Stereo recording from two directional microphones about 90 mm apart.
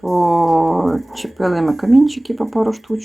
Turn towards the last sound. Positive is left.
turn(degrees=0)  # may be behind; listen again after turning